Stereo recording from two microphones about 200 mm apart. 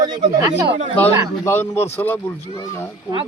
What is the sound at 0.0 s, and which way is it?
Speech, 20° right (ahead or behind).